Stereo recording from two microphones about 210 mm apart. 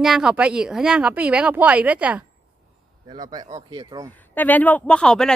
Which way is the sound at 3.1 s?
20° right (ahead or behind).